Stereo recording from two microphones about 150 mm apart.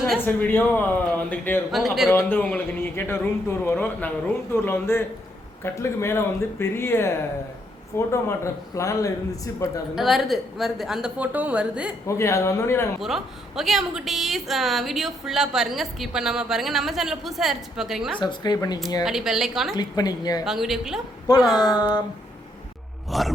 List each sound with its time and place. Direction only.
0.3 s a man's voice: 10° left (ahead or behind)
1.7 s a woman's voice: centre (ahead or behind)
2.0 s a man's voice: 15° left (ahead or behind)
9.9 s a woman's voice: centre (ahead or behind)
12.0 s a man's voice: 20° left (ahead or behind)
13.0 s a woman's voice: centre (ahead or behind)
18.2 s a man's voice: 30° left (ahead or behind)
19.0 s a woman's voice: 5° right (ahead or behind)
19.7 s a man's voice: 25° left (ahead or behind)
20.4 s a woman's voice: centre (ahead or behind)
21.6 s a man's voice: 25° left (ahead or behind)
23.0 s a woman's voice: centre (ahead or behind)